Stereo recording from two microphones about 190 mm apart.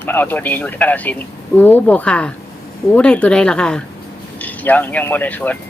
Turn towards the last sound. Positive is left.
turn(degrees=10)  # may be behind; listen again after turning